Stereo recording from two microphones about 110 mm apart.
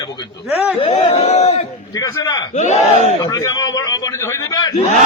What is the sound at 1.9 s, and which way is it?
Speech, 35° left (ahead or behind).